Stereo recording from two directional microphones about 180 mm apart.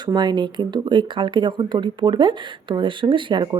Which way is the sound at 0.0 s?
25° right (ahead or behind).